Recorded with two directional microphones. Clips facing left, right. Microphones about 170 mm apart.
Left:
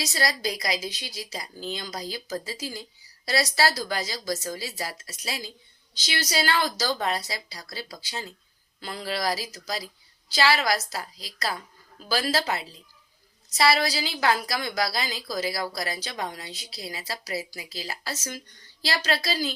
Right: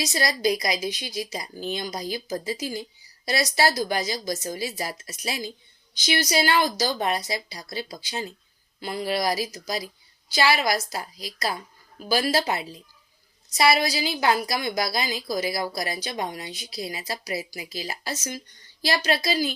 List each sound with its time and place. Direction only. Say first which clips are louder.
0.0 s a woman's voice: right 4 dB; 20° right (ahead or behind)